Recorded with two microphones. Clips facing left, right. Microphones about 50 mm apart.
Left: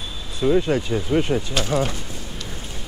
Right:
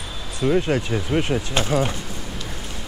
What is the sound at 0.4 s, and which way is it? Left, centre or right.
Speech, right.